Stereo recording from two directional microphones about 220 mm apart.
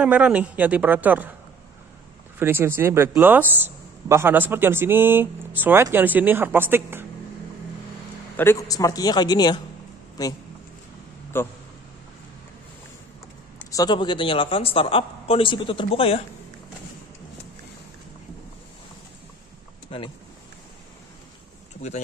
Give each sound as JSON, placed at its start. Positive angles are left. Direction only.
{"t": 0.0, "sound": "speech", "side_deg": -5}
{"t": 2.3, "sound": "speech", "side_deg": -10}
{"t": 8.4, "sound": "a man's voice", "side_deg": 10}
{"t": 11.3, "sound": "a man's voice", "side_deg": 10}
{"t": 13.7, "sound": "speech", "side_deg": 15}
{"t": 19.9, "sound": "speech", "side_deg": 25}